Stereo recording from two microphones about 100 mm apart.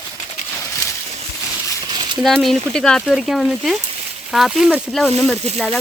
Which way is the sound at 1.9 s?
50° right (ahead or behind).